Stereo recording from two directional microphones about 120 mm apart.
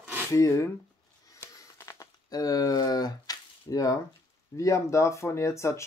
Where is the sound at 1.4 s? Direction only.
25° left (ahead or behind).